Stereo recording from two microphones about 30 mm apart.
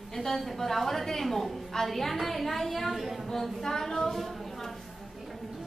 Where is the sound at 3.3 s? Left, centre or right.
Centre.